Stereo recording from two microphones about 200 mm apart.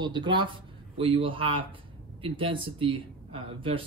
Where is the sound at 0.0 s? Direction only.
20° right (ahead or behind).